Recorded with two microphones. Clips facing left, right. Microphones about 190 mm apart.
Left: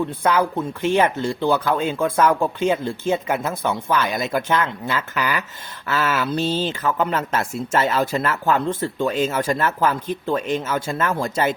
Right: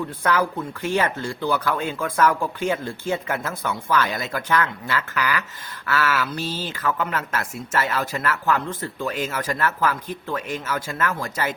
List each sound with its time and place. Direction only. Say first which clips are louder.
0.2 s speech: left 1 dB; 20° left (ahead or behind)